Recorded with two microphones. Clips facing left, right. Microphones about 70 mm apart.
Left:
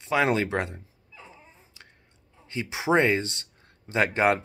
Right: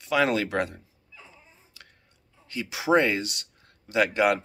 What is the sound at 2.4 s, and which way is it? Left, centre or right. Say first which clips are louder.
Speech: even; left.